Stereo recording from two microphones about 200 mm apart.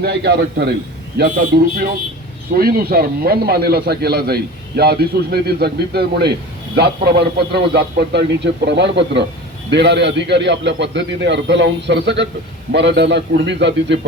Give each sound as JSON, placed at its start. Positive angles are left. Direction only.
{"t": 0.0, "sound": "a man's voice", "side_deg": -55}